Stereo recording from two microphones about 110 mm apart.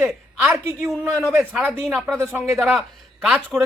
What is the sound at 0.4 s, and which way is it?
Speech, 25° right (ahead or behind).